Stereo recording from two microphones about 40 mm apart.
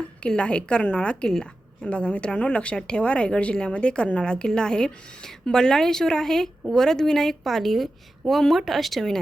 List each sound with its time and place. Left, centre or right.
0.3 s a woman's voice: left; by 9.1 s centre